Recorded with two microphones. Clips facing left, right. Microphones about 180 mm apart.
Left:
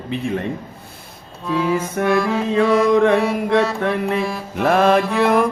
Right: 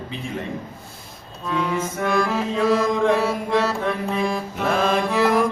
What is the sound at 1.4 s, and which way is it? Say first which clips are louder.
Music: left 4 dB; 5° left (ahead or behind).